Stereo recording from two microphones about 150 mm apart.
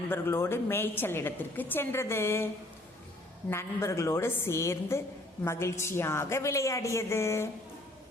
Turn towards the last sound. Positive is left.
turn(degrees=15)  # may be behind; listen again after turning